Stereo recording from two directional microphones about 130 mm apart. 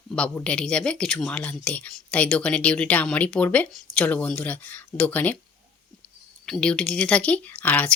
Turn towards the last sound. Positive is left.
turn(degrees=10)  # may be behind; listen again after turning